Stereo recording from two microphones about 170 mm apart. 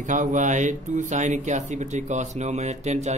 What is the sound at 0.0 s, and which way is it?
Speech, 50° right (ahead or behind).